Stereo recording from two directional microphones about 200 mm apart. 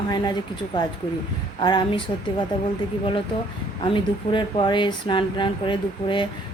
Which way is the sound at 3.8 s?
25° left (ahead or behind).